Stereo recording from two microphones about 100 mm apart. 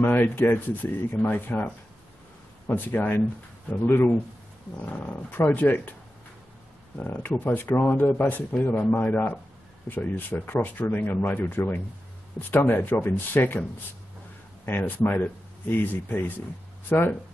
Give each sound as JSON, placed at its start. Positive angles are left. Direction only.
{"t": 0.0, "sound": "speech", "side_deg": 20}
{"t": 7.0, "sound": "speech", "side_deg": 20}
{"t": 14.7, "sound": "speech", "side_deg": 20}